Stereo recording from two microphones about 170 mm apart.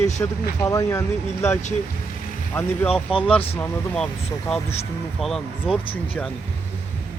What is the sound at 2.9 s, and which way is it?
Speech, 30° left (ahead or behind).